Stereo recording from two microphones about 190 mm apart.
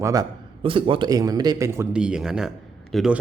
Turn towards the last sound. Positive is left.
turn(degrees=0)  # may be behind; listen again after turning